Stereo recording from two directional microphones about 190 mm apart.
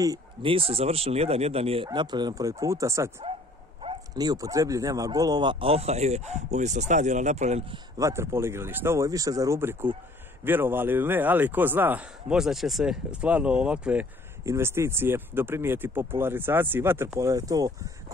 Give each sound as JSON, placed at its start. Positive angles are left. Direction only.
{"t": 0.0, "sound": "speech", "side_deg": -25}
{"t": 8.0, "sound": "speech", "side_deg": -15}